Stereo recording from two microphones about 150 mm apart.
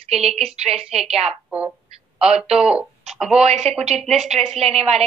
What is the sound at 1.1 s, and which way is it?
Speech, 45° right (ahead or behind).